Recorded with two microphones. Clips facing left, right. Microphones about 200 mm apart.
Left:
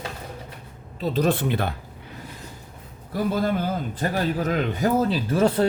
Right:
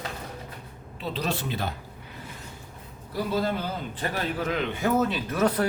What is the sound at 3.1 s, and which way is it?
A man's voice, 50° left (ahead or behind).